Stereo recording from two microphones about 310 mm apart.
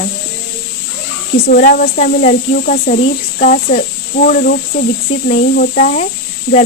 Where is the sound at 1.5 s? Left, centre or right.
Left.